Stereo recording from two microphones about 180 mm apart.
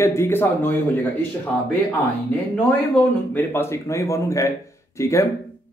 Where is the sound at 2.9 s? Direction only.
10° left (ahead or behind).